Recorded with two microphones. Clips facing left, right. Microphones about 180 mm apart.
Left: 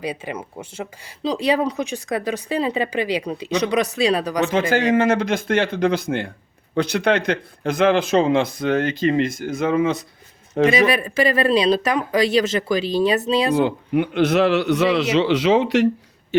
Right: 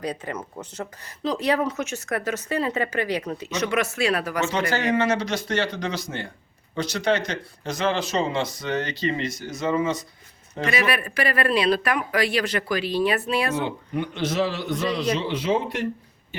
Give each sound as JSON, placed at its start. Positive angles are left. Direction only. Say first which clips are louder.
{"t": 0.0, "sound": "a woman's voice", "louder": "left 2 dB", "side_deg": 10}
{"t": 4.9, "sound": "speech", "louder": "left 5 dB", "side_deg": 50}
{"t": 10.7, "sound": "speech", "louder": "left 3 dB", "side_deg": 20}
{"t": 13.9, "sound": "a man's voice", "louder": "left 8 dB", "side_deg": 60}